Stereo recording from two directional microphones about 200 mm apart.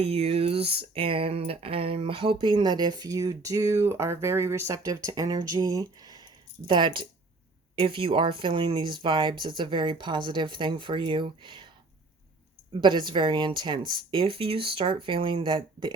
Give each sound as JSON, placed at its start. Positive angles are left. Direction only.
{"t": 0.0, "sound": "speech", "side_deg": -30}
{"t": 12.8, "sound": "speech", "side_deg": -25}